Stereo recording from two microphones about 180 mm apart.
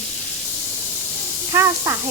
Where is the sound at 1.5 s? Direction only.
15° right (ahead or behind).